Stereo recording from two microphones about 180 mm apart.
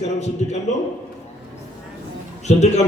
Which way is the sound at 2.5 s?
40° left (ahead or behind).